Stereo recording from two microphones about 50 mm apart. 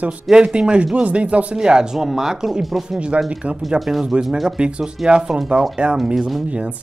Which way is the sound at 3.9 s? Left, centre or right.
Centre.